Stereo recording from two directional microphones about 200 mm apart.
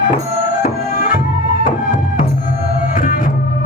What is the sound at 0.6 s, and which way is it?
Music, 40° left (ahead or behind).